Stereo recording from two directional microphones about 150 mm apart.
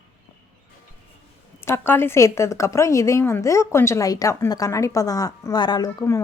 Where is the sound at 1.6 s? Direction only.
15° left (ahead or behind).